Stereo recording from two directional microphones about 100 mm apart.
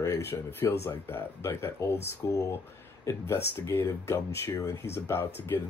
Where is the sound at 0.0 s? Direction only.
25° left (ahead or behind).